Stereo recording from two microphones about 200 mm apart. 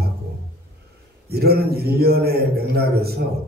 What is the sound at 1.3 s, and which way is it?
A man's voice, 55° right (ahead or behind).